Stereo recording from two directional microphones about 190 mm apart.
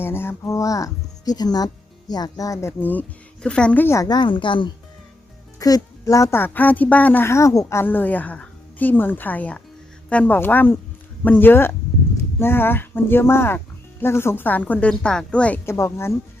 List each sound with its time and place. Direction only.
0.0 s a woman's voice: 10° left (ahead or behind)